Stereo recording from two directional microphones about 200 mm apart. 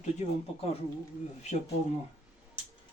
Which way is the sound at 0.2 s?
35° left (ahead or behind).